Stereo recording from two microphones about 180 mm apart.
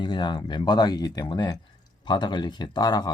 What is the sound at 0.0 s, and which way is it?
Speech, 25° left (ahead or behind).